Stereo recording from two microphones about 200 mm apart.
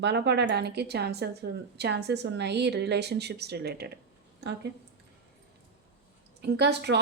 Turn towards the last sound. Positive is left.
turn(degrees=-55)  # may be behind; listen again after turning